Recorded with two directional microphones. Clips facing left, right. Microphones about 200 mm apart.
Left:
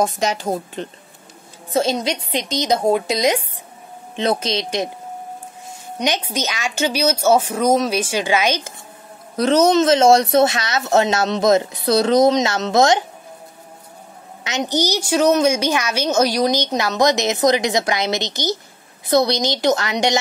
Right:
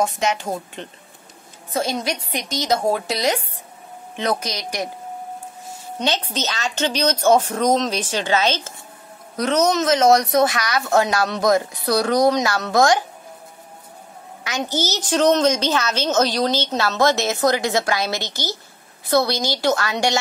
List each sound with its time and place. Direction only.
0.0 s speech: 35° left (ahead or behind)
1.7 s speech: 25° left (ahead or behind)
5.9 s a woman's voice: 15° left (ahead or behind)
9.4 s speech: 30° left (ahead or behind)
14.4 s a woman's voice: 20° left (ahead or behind)